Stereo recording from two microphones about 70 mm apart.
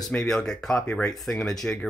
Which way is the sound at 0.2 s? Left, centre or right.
Centre.